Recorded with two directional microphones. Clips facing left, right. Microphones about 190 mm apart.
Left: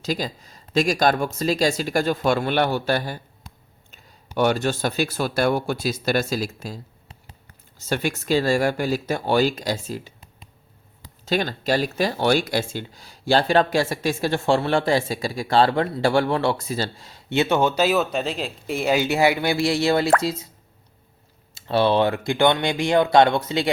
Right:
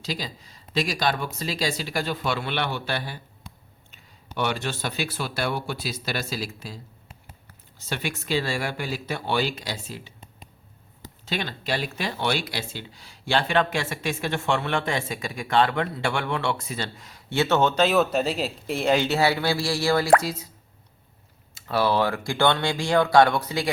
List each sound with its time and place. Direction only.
0.0 s speech: 45° left (ahead or behind)
4.4 s speech: 40° left (ahead or behind)
7.8 s speech: 45° left (ahead or behind)
11.3 s speech: 40° left (ahead or behind); by 20.1 s 20° left (ahead or behind)
21.5 s speech: 25° left (ahead or behind)